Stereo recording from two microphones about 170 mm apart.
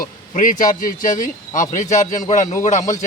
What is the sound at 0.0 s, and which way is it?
A man's voice, 50° left (ahead or behind).